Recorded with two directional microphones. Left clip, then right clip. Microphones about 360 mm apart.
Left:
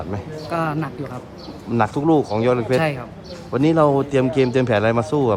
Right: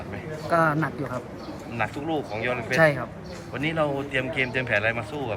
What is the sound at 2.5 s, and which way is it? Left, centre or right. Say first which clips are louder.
Speech: right 1 dB; centre.